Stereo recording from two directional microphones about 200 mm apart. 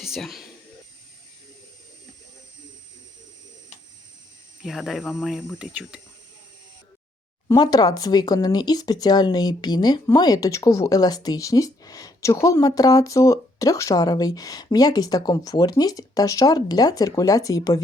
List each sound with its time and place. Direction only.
0.0 s speech: centre (ahead or behind)
4.6 s speech: centre (ahead or behind)
7.4 s speech: 20° left (ahead or behind)